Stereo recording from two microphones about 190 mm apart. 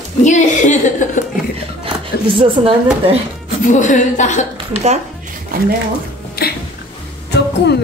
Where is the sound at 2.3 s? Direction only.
25° right (ahead or behind).